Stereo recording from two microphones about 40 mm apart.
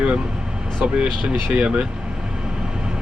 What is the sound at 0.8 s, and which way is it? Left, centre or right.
Speech, right.